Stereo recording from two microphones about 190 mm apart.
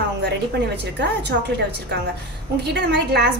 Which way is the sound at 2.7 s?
60° right (ahead or behind).